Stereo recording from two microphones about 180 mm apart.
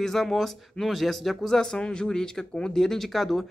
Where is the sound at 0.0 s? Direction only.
Centre (ahead or behind).